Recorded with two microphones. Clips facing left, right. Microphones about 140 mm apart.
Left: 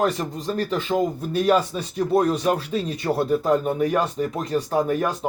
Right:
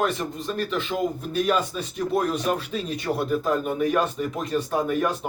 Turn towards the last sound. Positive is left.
turn(degrees=30)  # may be behind; listen again after turning